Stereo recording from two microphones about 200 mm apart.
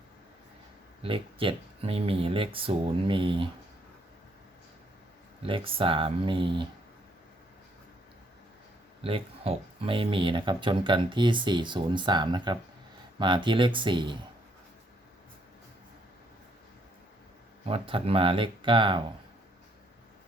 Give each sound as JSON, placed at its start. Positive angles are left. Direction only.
{"t": 1.0, "sound": "speech", "side_deg": -25}
{"t": 5.4, "sound": "speech", "side_deg": -25}
{"t": 9.0, "sound": "speech", "side_deg": -30}
{"t": 17.7, "sound": "speech", "side_deg": -30}